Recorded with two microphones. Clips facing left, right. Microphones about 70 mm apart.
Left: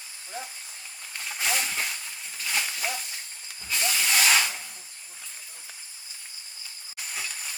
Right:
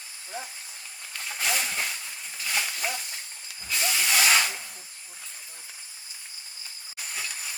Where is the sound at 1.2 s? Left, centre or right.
Centre.